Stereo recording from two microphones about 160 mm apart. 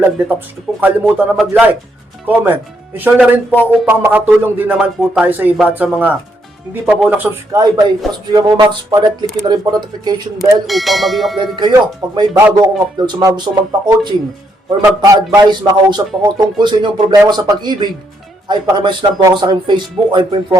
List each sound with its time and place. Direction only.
0.0 s a man's voice: 10° right (ahead or behind)
7.5 s a man's voice: 25° right (ahead or behind)
10.3 s speech: centre (ahead or behind)
11.7 s a man's voice: 25° right (ahead or behind)